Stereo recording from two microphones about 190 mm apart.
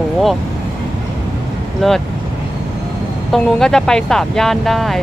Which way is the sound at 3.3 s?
5° left (ahead or behind).